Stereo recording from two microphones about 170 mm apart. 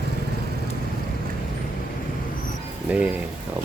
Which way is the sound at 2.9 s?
10° right (ahead or behind).